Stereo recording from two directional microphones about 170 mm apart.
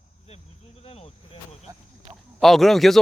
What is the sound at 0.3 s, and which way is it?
Cricket, 35° left (ahead or behind).